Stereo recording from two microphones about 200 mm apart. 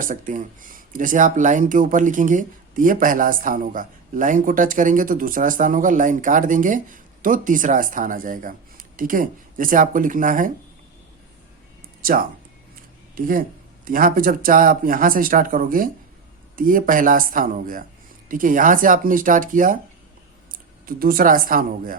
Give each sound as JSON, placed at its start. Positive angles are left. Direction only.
{"t": 0.0, "sound": "speech", "side_deg": -40}
{"t": 12.0, "sound": "speech", "side_deg": -45}